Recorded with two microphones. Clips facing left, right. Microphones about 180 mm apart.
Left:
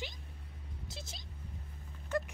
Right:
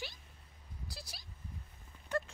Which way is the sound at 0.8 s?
20° left (ahead or behind).